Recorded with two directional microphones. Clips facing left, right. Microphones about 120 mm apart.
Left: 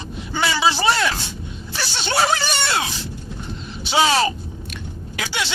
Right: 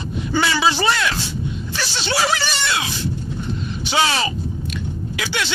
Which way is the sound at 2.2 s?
35° left (ahead or behind).